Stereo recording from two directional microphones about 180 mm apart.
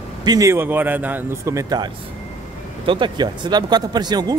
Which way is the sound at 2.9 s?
25° right (ahead or behind).